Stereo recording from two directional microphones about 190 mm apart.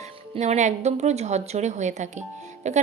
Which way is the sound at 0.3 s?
40° right (ahead or behind).